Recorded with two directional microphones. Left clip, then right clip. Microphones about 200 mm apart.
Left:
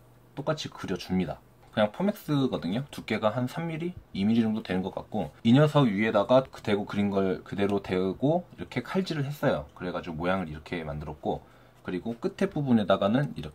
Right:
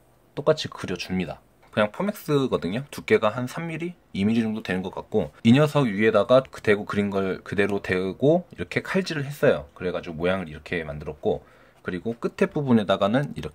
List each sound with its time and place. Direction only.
0.4 s speech: 55° right (ahead or behind)